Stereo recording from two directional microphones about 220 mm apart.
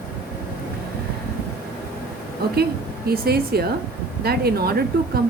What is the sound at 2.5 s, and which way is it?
A woman's voice, 45° right (ahead or behind).